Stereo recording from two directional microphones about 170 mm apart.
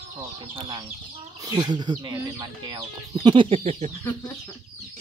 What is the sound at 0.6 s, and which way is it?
Speech, 30° right (ahead or behind).